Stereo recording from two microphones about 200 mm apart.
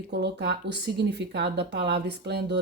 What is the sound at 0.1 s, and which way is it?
A woman's voice, 55° right (ahead or behind).